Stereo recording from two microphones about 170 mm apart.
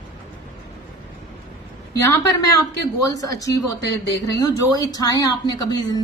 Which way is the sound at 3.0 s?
20° left (ahead or behind).